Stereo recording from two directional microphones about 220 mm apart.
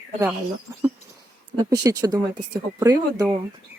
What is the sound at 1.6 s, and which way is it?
Speech, 15° right (ahead or behind).